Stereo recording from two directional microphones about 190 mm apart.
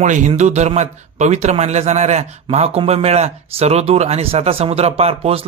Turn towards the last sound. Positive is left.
turn(degrees=-30)  # may be behind; listen again after turning